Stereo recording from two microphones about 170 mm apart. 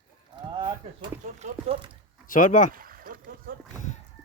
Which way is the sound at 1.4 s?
45° right (ahead or behind).